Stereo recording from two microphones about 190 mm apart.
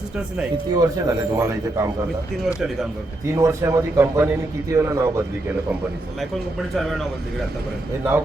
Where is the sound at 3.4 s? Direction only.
15° right (ahead or behind).